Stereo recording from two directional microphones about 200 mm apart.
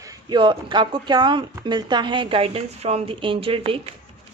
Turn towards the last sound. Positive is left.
turn(degrees=-25)  # may be behind; listen again after turning